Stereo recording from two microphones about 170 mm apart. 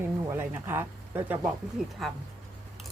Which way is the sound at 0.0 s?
15° right (ahead or behind).